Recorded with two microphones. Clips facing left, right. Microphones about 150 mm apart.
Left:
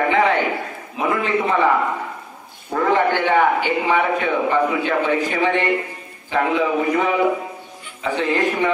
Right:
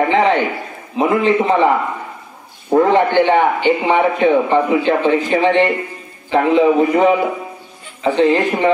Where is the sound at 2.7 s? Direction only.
35° right (ahead or behind).